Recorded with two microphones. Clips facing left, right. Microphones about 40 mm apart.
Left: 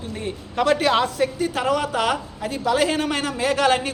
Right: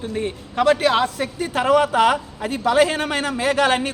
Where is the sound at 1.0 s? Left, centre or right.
Right.